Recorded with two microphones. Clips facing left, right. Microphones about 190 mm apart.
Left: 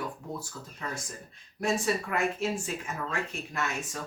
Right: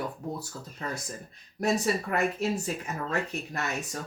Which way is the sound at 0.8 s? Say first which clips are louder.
Right 2 dB; 40° right (ahead or behind).